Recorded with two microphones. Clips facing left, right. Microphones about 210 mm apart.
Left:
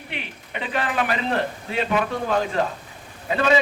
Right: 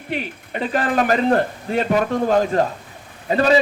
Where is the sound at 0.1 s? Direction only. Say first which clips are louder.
Right 9 dB; 40° right (ahead or behind).